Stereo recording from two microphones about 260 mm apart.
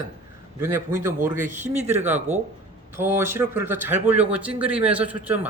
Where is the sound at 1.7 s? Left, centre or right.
Right.